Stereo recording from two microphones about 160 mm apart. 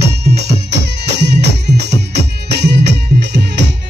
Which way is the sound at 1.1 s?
90° right.